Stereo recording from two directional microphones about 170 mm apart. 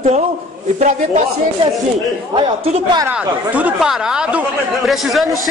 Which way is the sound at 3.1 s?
10° right (ahead or behind).